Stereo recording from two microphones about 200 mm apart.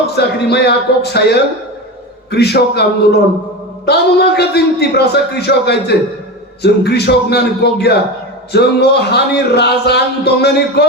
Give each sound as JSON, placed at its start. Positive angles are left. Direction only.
{"t": 0.2, "sound": "speech", "side_deg": 55}